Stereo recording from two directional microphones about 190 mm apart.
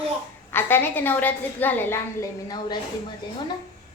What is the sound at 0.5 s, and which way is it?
A woman's voice, 10° left (ahead or behind).